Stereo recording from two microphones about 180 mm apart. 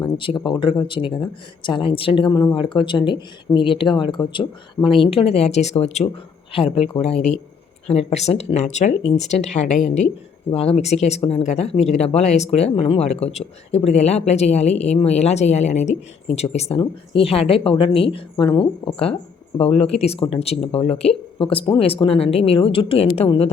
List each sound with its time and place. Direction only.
0.0 s a woman's voice: 25° left (ahead or behind)